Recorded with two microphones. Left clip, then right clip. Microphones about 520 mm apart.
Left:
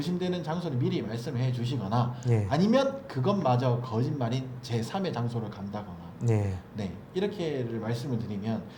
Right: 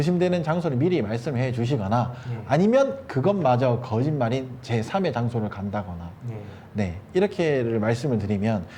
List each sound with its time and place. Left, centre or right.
0.0 s a man's voice: right